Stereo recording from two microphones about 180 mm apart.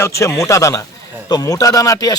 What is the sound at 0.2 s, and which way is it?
Speech, 15° left (ahead or behind).